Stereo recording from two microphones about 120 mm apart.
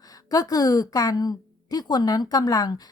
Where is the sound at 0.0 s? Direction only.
30° left (ahead or behind).